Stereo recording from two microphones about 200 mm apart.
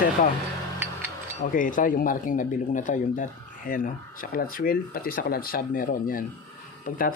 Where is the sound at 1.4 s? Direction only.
40° left (ahead or behind).